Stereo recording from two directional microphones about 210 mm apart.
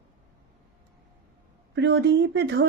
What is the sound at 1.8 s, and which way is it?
Speech, 55° right (ahead or behind).